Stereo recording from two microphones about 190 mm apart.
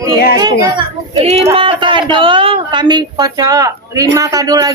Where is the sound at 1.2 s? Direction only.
35° right (ahead or behind).